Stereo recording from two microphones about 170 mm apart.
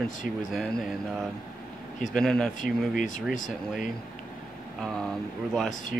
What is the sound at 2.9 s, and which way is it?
Speech, 50° left (ahead or behind).